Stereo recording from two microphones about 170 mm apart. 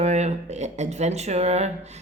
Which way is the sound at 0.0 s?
40° right (ahead or behind).